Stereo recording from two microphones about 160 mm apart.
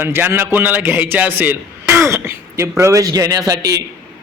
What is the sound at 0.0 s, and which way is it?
A man's voice, 15° right (ahead or behind).